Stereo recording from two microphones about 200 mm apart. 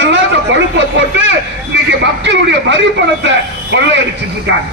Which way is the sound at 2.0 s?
65° right (ahead or behind).